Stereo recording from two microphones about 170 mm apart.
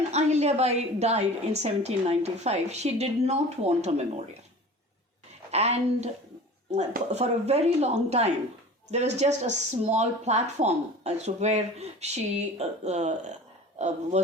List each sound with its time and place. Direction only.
0.1 s speech: 40° right (ahead or behind)
5.5 s speech: 40° right (ahead or behind)